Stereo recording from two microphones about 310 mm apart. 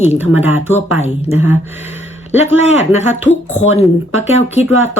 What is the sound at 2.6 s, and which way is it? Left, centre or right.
Speech, left.